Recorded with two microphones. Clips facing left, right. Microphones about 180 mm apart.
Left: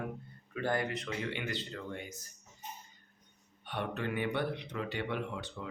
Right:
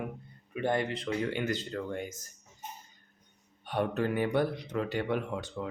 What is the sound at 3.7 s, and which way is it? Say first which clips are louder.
Speech: right 6 dB; 40° right (ahead or behind).